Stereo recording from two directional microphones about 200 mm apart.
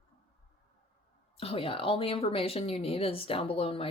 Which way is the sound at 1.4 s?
30° left (ahead or behind).